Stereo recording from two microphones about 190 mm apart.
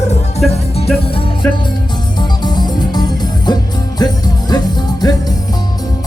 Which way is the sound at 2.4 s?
20° left (ahead or behind).